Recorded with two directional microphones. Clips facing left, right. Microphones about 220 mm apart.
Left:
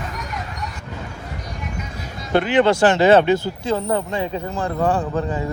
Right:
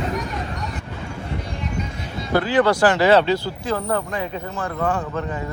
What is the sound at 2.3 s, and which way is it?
Speech, 25° left (ahead or behind).